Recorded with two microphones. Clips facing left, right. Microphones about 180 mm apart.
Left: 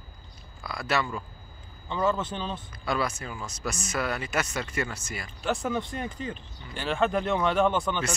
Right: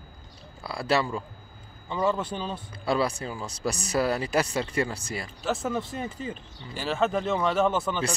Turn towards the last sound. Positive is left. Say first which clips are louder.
# even
turn(degrees=-5)  # may be behind; listen again after turning